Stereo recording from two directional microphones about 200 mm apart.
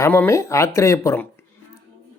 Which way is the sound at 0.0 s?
10° left (ahead or behind).